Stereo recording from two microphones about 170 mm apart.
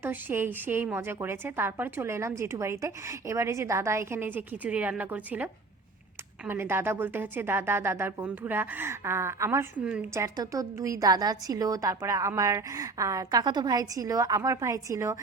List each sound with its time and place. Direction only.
0.0 s a woman's voice: 10° right (ahead or behind)